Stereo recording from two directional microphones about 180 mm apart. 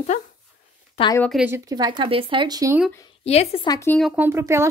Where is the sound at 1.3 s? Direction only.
10° right (ahead or behind).